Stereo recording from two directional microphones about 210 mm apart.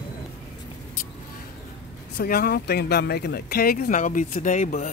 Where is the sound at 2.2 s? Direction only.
45° left (ahead or behind).